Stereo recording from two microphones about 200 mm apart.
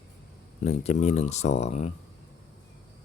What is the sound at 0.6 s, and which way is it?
Speech, 35° left (ahead or behind).